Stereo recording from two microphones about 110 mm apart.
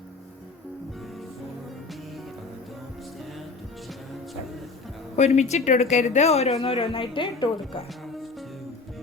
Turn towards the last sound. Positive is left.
turn(degrees=50)  # may be behind; listen again after turning